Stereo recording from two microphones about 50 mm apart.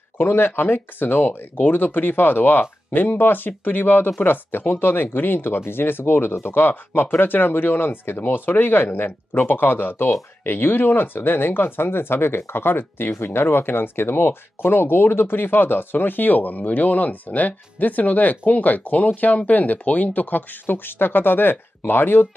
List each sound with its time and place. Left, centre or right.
0.2 s speech: left